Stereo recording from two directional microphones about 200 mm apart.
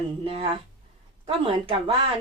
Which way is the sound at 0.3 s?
30° right (ahead or behind).